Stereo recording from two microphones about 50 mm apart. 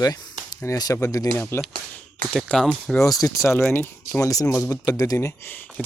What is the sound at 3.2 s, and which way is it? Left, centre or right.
Speech, left.